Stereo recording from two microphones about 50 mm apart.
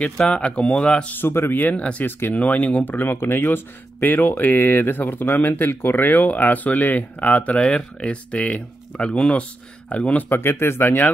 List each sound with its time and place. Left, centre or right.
0.3 s speech: left
1.1 s speech: left
1.8 s speech: left
2.0 s speech: left
2.3 s speech: left
10.3 s speech: left